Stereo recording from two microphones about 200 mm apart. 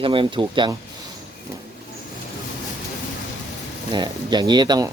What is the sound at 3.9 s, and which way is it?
Speech, 20° right (ahead or behind).